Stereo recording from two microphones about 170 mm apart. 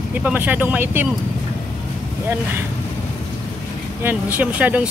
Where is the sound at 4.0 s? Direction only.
10° right (ahead or behind).